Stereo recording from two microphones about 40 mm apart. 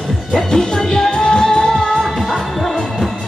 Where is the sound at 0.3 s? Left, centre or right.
Centre.